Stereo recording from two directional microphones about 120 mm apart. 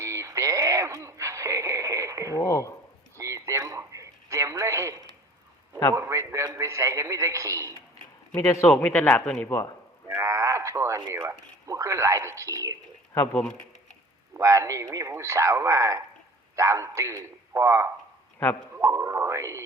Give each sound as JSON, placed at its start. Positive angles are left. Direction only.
{"t": 0.0, "sound": "radio", "side_deg": -25}
{"t": 2.4, "sound": "speech", "side_deg": 25}
{"t": 3.2, "sound": "radio", "side_deg": -25}
{"t": 6.0, "sound": "a man's voice", "side_deg": -25}
{"t": 8.4, "sound": "speech", "side_deg": 25}
{"t": 8.6, "sound": "speech", "side_deg": 10}
{"t": 10.1, "sound": "a sound", "side_deg": -25}
{"t": 11.1, "sound": "speech", "side_deg": -25}
{"t": 13.3, "sound": "speech", "side_deg": 5}
{"t": 14.3, "sound": "speech", "side_deg": -25}